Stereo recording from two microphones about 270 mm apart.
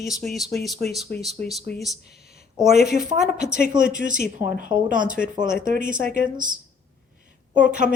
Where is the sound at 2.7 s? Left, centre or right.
Left.